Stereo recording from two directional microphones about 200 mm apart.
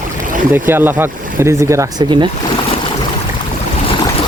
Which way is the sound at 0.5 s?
10° right (ahead or behind).